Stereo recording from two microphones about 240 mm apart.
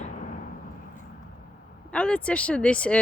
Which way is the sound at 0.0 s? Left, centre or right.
Left.